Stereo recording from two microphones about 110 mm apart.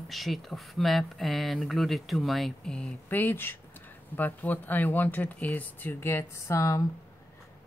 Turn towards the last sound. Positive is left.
turn(degrees=30)  # may be behind; listen again after turning